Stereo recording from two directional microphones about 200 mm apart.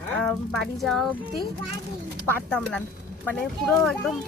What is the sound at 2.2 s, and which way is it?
Speech, 5° left (ahead or behind).